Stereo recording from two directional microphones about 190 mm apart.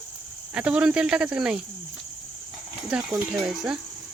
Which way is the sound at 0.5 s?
5° right (ahead or behind).